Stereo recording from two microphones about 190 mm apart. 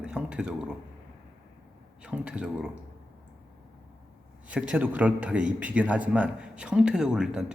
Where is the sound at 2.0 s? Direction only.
5° right (ahead or behind).